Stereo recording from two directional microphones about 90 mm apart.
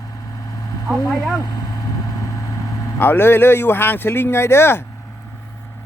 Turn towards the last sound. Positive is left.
turn(degrees=25)  # may be behind; listen again after turning